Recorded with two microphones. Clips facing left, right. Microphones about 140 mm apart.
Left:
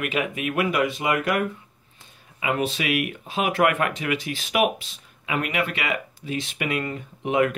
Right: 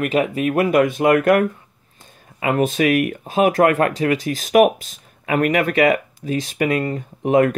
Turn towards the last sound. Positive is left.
turn(degrees=-45)  # may be behind; listen again after turning